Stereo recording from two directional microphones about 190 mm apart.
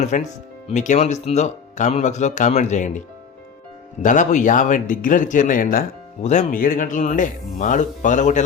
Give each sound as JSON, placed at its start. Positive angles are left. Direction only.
{"t": 0.1, "sound": "speech", "side_deg": 40}
{"t": 4.0, "sound": "speech", "side_deg": 40}